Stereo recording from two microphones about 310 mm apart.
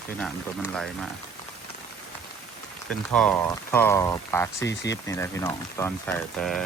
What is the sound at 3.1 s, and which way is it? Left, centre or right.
Speech, centre.